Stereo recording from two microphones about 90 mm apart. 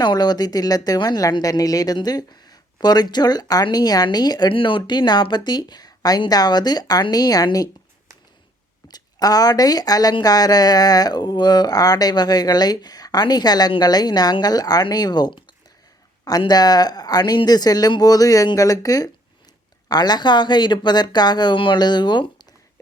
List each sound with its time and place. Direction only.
0.0 s speech: 50° left (ahead or behind)
4.5 s speech: 65° left (ahead or behind); by 7.4 s 45° left (ahead or behind)
8.9 s speech: 45° left (ahead or behind)
16.5 s speech: 50° left (ahead or behind)